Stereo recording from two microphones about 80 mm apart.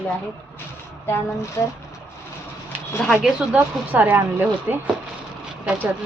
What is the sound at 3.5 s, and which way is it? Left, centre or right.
Speech, centre.